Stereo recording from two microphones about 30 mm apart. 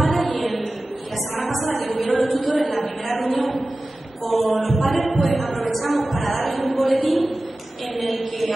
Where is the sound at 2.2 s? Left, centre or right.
Centre.